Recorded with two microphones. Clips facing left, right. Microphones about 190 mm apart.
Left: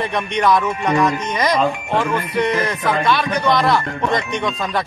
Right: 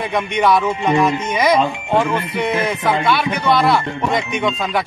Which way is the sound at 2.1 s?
25° right (ahead or behind).